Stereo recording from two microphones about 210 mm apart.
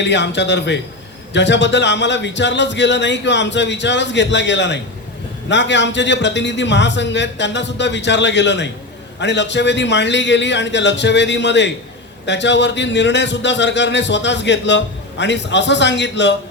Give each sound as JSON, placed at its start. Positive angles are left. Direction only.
{"t": 0.0, "sound": "a man's voice", "side_deg": 55}